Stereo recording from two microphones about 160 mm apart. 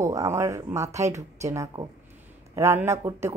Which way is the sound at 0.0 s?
20° right (ahead or behind).